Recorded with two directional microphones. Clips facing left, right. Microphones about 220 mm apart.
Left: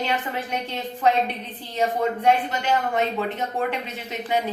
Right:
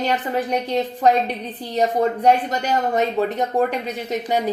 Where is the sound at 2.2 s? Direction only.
40° right (ahead or behind).